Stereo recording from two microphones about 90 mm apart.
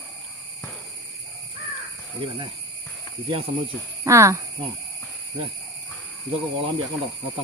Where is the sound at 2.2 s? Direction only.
90° right.